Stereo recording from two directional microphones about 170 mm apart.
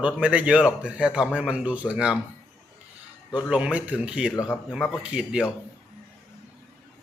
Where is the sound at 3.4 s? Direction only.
5° right (ahead or behind).